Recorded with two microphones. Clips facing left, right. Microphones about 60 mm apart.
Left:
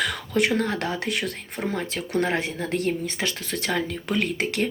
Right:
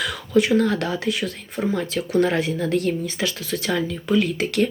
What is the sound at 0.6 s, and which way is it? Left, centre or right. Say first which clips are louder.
Speech: right 4 dB; left.